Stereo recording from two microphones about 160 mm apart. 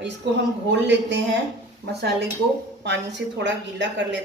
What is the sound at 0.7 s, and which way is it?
A woman's voice, 90° right.